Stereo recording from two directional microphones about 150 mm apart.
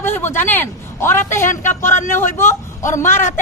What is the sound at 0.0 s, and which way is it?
A man's voice, 15° left (ahead or behind).